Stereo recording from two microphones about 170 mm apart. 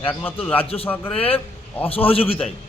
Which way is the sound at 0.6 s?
35° left (ahead or behind).